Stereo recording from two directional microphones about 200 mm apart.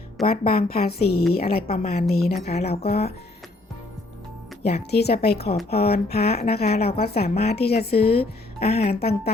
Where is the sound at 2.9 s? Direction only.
50° left (ahead or behind).